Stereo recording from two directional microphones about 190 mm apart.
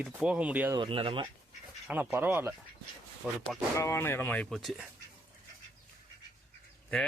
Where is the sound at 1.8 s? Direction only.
10° right (ahead or behind).